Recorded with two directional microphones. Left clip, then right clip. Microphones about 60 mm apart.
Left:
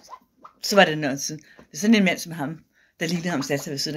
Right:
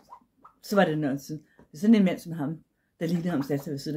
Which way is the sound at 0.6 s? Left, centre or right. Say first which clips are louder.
Left 6 dB; right.